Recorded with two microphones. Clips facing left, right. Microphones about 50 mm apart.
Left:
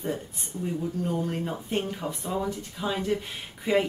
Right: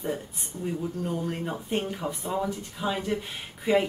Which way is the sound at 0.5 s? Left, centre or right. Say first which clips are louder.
Left 1 dB; right.